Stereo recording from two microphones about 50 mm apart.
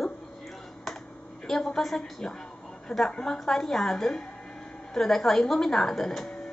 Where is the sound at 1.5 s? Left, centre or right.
Centre.